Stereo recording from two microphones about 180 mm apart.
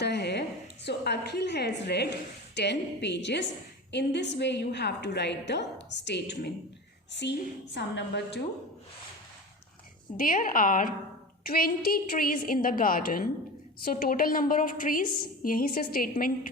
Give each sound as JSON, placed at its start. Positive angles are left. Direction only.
{"t": 0.0, "sound": "a sound", "side_deg": 65}
{"t": 0.9, "sound": "a woman's voice", "side_deg": 65}
{"t": 10.2, "sound": "a woman's voice", "side_deg": 50}